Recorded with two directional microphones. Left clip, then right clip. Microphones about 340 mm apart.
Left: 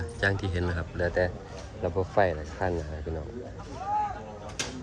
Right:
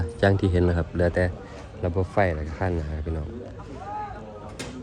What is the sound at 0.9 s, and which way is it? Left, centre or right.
Speech, right.